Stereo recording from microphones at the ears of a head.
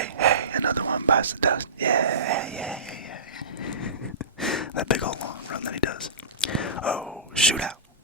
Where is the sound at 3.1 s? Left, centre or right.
Left.